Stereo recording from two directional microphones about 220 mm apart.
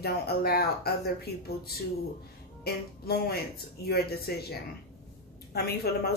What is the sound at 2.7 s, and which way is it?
Speech, 45° left (ahead or behind).